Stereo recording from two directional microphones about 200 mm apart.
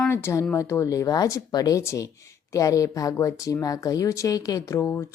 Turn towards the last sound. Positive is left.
turn(degrees=15)  # may be behind; listen again after turning